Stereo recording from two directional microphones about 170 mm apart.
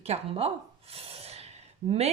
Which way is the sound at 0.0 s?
35° right (ahead or behind).